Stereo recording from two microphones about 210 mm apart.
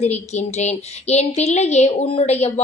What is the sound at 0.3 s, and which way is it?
Speech, 30° left (ahead or behind).